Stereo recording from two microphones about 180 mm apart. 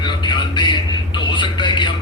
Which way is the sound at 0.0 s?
25° left (ahead or behind).